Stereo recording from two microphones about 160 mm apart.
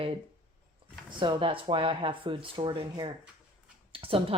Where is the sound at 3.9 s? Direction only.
35° right (ahead or behind).